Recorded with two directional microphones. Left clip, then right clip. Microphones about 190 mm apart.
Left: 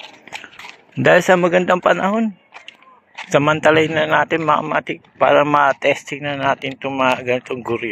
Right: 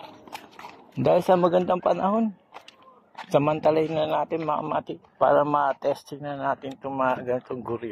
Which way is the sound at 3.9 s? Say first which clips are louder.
Left 9 dB; 45° left (ahead or behind).